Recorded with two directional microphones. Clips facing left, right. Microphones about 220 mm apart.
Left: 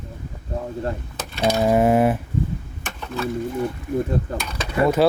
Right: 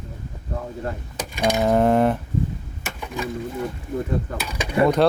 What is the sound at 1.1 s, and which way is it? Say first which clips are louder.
Mechanisms: right 1 dB; 10° right (ahead or behind).